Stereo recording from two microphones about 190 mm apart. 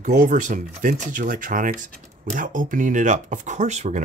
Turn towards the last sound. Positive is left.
turn(degrees=-35)  # may be behind; listen again after turning